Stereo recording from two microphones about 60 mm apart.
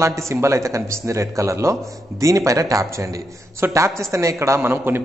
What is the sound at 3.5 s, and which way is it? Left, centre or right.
A man's voice, right.